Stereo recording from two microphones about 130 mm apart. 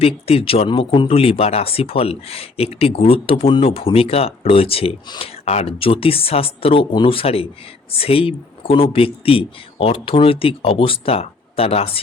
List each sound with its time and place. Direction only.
0.0 s speech: 50° left (ahead or behind)
5.0 s speech: 35° left (ahead or behind)
5.3 s speech: 50° left (ahead or behind)